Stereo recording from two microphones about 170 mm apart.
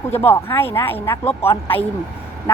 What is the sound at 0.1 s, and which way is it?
A woman's voice, 15° left (ahead or behind).